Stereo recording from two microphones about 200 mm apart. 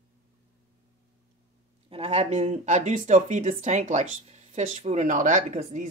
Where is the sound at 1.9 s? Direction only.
30° right (ahead or behind).